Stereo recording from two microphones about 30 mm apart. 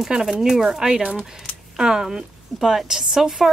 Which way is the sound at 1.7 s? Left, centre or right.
Centre.